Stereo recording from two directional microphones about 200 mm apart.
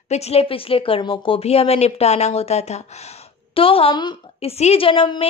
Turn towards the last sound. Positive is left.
turn(degrees=25)  # may be behind; listen again after turning